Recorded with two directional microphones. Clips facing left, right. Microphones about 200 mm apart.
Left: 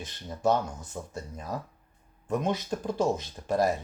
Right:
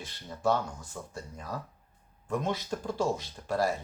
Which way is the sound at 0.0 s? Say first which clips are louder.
Left 3 dB; 20° left (ahead or behind).